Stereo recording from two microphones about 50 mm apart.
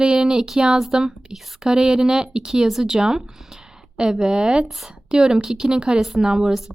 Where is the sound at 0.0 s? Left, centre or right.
Centre.